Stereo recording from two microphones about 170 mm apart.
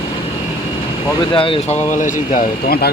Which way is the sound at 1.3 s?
30° left (ahead or behind).